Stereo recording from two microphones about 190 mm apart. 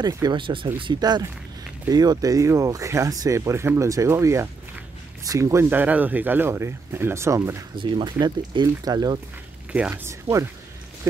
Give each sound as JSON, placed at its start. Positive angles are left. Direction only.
{"t": 0.0, "sound": "speech", "side_deg": -20}
{"t": 9.7, "sound": "speech", "side_deg": -10}